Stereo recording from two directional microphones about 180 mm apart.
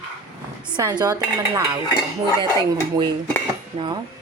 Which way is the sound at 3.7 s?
30° right (ahead or behind).